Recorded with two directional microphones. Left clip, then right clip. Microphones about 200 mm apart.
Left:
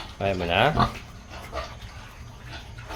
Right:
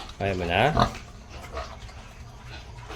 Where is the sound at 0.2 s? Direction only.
15° right (ahead or behind).